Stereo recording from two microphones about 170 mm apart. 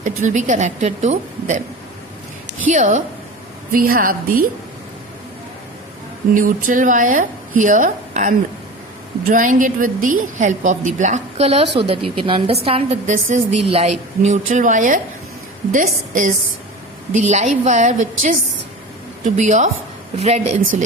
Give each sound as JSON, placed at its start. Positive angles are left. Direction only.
{"t": 0.0, "sound": "a woman's voice", "side_deg": -45}
{"t": 2.6, "sound": "a woman's voice", "side_deg": -45}
{"t": 3.7, "sound": "a woman's voice", "side_deg": -60}
{"t": 6.3, "sound": "a woman's voice", "side_deg": -50}